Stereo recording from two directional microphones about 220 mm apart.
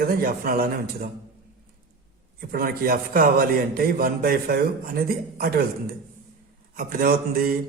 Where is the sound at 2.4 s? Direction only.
40° right (ahead or behind).